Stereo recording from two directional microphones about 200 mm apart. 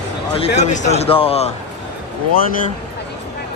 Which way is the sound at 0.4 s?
35° left (ahead or behind).